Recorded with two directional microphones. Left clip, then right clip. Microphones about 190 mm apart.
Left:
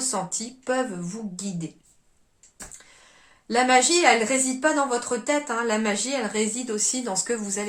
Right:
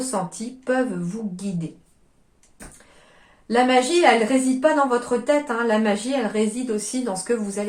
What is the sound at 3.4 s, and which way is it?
Speech, 15° left (ahead or behind).